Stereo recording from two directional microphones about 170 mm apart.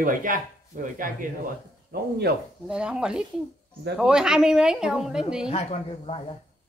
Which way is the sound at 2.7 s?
5° right (ahead or behind).